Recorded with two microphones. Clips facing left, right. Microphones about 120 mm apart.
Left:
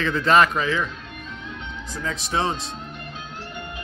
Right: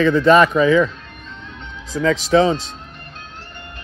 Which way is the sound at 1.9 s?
90° right.